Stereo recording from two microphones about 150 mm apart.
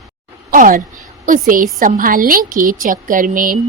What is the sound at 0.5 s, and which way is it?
A woman's voice, 65° right (ahead or behind).